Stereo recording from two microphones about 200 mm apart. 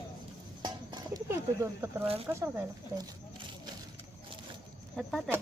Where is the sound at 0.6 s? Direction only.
20° right (ahead or behind).